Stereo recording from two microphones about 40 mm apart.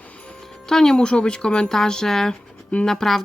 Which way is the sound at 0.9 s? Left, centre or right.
Left.